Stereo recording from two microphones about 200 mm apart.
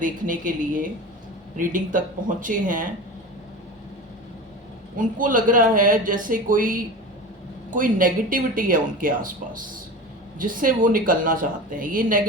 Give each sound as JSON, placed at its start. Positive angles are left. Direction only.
{"t": 0.0, "sound": "speech", "side_deg": -40}
{"t": 4.9, "sound": "speech", "side_deg": -40}